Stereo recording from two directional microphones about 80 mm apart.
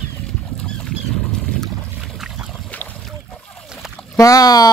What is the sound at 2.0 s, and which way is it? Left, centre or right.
Boat, centre.